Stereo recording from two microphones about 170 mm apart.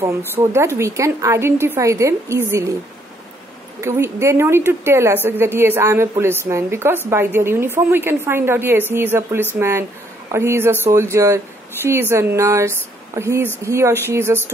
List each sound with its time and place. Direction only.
0.3 s speech: 15° right (ahead or behind)
3.8 s speech: 15° right (ahead or behind)